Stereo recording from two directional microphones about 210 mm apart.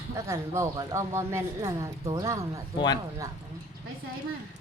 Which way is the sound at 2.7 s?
20° left (ahead or behind).